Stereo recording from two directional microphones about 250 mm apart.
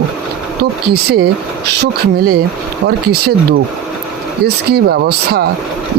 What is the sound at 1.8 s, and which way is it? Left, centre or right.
Speech, right.